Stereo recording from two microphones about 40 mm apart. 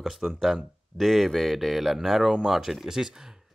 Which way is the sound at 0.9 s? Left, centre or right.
Centre.